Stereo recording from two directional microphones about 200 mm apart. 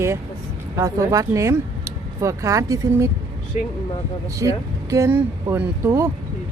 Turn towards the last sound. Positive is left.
turn(degrees=-10)  # may be behind; listen again after turning